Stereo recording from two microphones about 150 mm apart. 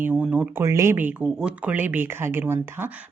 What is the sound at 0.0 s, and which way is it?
Speech, 10° right (ahead or behind).